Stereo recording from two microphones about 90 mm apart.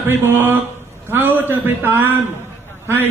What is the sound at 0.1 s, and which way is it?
Speech, 25° right (ahead or behind).